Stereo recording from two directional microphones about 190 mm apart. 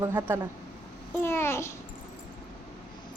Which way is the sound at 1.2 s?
15° left (ahead or behind).